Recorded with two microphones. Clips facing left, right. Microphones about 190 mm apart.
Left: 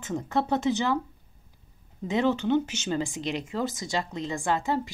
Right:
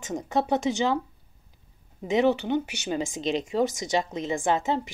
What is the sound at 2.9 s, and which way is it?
Speech, 20° right (ahead or behind).